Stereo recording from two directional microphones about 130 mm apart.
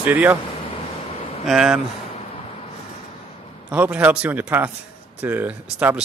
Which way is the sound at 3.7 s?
10° right (ahead or behind).